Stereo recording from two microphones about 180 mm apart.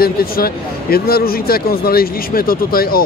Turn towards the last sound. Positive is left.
turn(degrees=55)  # may be behind; listen again after turning